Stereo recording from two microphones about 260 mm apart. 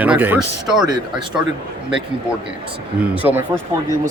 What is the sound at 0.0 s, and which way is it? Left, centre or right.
Speech, centre.